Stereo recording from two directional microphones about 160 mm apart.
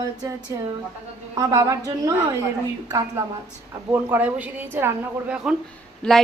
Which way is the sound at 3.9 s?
10° right (ahead or behind).